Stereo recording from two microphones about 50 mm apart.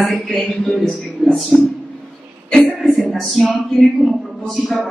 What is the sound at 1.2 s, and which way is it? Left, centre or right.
Speech, centre.